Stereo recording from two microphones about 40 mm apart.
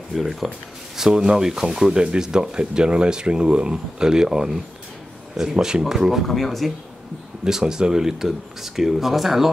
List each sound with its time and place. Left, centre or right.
0.1 s speech: centre
0.9 s speech: centre
6.2 s speech: centre
7.4 s speech: centre